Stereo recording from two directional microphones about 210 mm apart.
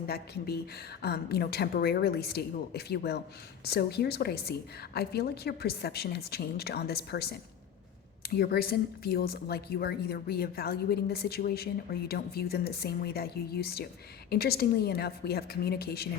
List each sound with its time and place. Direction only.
0.1 s speech: 50° left (ahead or behind)